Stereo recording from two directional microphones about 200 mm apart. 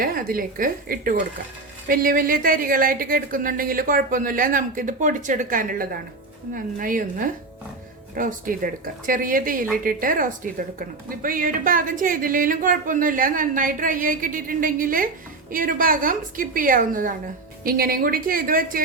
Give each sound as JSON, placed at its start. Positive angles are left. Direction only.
{"t": 0.0, "sound": "a woman's voice", "side_deg": -45}